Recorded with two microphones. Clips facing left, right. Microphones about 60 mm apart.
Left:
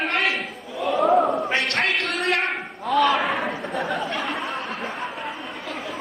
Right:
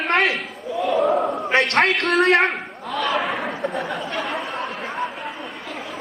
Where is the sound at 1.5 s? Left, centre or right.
Right.